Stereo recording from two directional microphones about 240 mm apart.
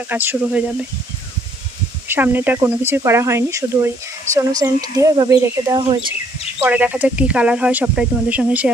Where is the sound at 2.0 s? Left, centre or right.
Centre.